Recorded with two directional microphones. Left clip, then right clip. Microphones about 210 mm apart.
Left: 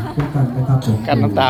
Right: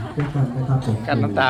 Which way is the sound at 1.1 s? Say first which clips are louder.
Left 4 dB; 5° left (ahead or behind).